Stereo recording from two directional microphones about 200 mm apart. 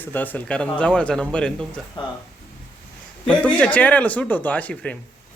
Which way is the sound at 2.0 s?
25° left (ahead or behind).